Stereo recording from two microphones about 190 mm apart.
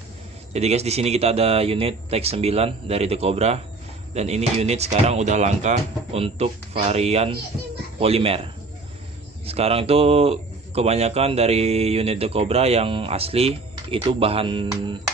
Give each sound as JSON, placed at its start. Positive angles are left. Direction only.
{"t": 0.5, "sound": "speech", "side_deg": -35}
{"t": 9.5, "sound": "speech", "side_deg": -30}